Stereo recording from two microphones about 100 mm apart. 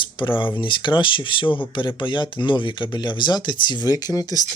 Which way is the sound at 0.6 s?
55° left (ahead or behind).